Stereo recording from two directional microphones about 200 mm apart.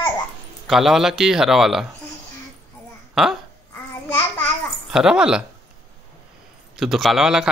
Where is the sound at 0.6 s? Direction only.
Centre (ahead or behind).